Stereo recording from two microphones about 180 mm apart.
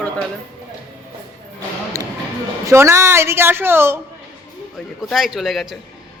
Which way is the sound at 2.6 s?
15° right (ahead or behind).